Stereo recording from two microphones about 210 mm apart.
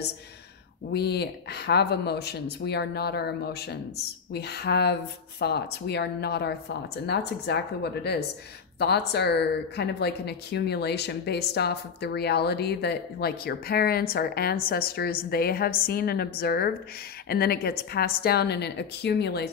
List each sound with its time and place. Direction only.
0.9 s speech: 50° left (ahead or behind)